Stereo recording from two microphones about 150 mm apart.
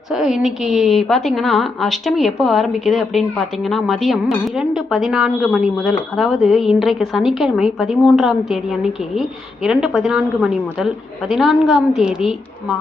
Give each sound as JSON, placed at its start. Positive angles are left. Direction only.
{"t": 0.1, "sound": "a woman's voice", "side_deg": -5}